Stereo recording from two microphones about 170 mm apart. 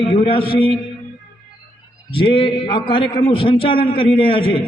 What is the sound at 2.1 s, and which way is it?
A man's voice, 30° left (ahead or behind).